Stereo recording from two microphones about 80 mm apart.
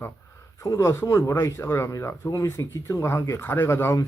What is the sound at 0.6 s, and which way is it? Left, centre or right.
Speech, left.